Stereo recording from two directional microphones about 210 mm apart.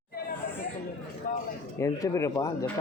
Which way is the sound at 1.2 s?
40° left (ahead or behind).